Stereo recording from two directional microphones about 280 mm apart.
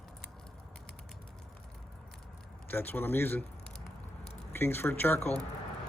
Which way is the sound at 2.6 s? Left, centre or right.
Centre.